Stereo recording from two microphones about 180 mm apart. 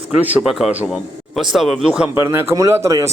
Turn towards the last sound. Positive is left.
turn(degrees=-15)  # may be behind; listen again after turning